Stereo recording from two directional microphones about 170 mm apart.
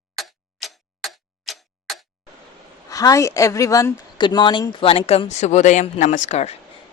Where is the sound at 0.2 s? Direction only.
Centre (ahead or behind).